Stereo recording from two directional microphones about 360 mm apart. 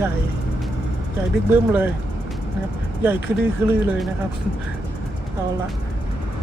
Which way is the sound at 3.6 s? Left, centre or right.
Centre.